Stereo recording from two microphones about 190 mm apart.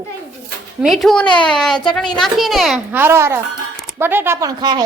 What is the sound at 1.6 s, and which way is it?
A man's voice, centre (ahead or behind).